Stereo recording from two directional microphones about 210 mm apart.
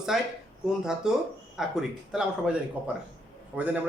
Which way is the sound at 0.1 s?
Centre (ahead or behind).